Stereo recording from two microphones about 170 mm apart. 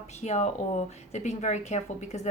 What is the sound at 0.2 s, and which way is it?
A woman's voice, 40° left (ahead or behind).